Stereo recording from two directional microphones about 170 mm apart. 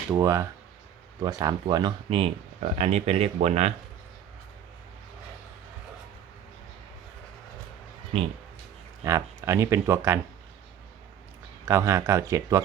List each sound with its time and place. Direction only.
0.1 s speech: 15° right (ahead or behind); by 3.8 s 40° right (ahead or behind)
9.0 s speech: 20° right (ahead or behind)
11.7 s speech: 15° right (ahead or behind)